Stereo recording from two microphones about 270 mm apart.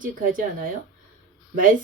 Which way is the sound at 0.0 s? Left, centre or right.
Right.